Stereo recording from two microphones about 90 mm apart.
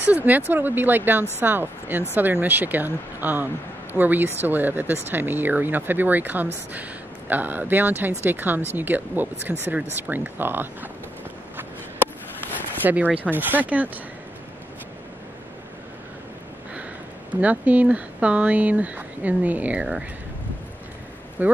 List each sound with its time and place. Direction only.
0.0 s speech: 20° right (ahead or behind)
12.8 s speech: 15° right (ahead or behind)
17.3 s speech: 15° right (ahead or behind)
21.4 s speech: 20° right (ahead or behind)